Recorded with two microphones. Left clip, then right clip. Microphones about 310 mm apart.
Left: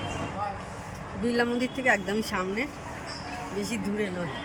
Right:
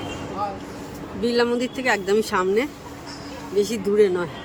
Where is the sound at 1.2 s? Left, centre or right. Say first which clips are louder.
Right 6 dB; centre.